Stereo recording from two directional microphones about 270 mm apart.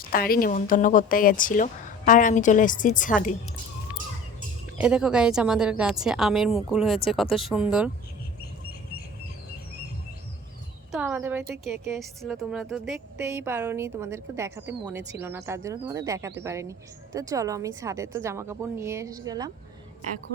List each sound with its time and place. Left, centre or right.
0.0 s speech: left
4.8 s a woman's voice: centre
10.9 s a woman's voice: centre